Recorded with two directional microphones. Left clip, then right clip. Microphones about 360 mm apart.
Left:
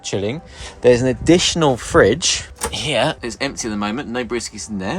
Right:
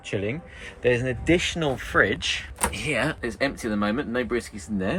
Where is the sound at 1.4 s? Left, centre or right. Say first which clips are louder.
Left 9 dB; left.